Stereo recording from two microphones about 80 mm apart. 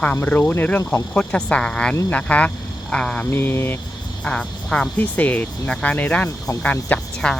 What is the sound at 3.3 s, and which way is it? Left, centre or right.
Speech, left.